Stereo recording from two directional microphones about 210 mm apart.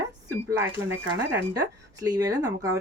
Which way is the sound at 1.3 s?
15° right (ahead or behind).